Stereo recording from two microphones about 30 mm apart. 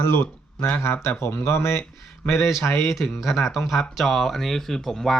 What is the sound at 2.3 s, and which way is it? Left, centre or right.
Speech, centre.